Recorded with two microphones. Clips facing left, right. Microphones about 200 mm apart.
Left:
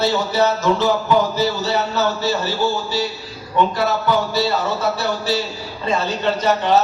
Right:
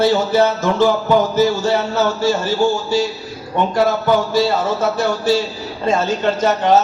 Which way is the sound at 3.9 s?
50° right (ahead or behind).